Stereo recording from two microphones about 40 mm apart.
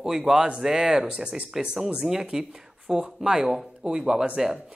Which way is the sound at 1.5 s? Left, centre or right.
Centre.